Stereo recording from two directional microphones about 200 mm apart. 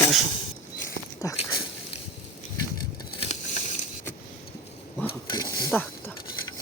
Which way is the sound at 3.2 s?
35° left (ahead or behind).